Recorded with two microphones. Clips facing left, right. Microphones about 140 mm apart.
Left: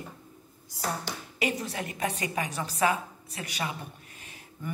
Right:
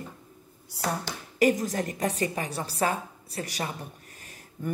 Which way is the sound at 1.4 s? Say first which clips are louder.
Right 8 dB; 45° right (ahead or behind).